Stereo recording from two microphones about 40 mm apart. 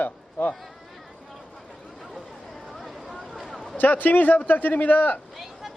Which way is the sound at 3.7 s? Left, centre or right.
Left.